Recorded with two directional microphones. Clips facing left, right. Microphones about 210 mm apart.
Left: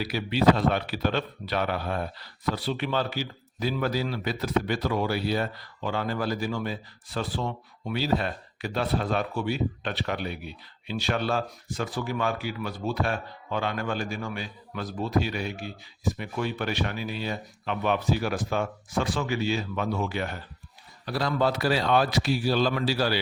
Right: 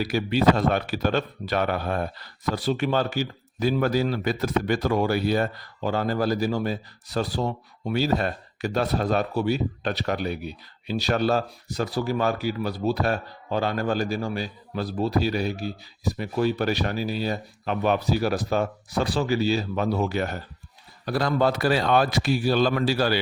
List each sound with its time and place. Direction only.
0.0 s a man's voice: 45° right (ahead or behind)